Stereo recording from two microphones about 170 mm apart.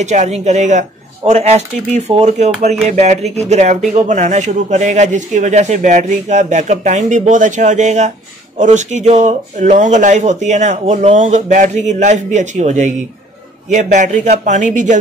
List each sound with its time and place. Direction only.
0.0 s speech: 45° right (ahead or behind)